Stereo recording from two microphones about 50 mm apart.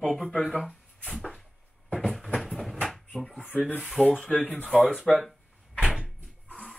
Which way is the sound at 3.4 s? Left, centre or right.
Left.